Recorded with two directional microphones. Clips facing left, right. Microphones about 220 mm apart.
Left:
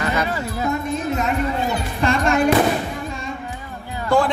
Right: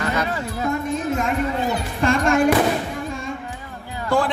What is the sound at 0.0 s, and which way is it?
Speech, 10° left (ahead or behind).